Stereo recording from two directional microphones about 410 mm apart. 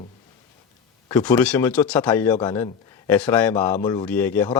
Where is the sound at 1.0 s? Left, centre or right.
Centre.